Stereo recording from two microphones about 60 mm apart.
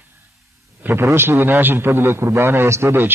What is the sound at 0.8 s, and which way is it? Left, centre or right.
A man's voice, right.